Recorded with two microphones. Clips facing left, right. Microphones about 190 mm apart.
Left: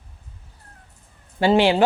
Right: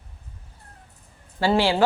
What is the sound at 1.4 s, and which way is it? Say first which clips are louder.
Speech: left 4 dB; 20° left (ahead or behind).